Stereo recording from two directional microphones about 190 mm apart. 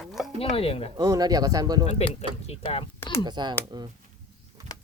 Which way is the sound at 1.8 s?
35° left (ahead or behind).